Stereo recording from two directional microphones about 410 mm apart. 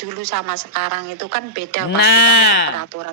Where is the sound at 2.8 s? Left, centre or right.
Right.